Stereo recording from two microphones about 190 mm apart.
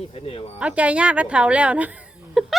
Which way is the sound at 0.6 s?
5° right (ahead or behind).